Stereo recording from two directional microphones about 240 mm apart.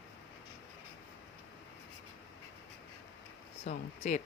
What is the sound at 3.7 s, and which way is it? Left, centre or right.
Speech, left.